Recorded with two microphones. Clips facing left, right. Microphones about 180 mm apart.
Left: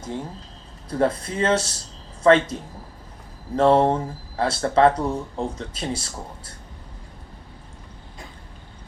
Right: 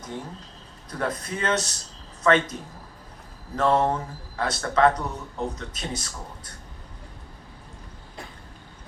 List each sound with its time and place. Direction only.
0.9 s speech: 30° left (ahead or behind)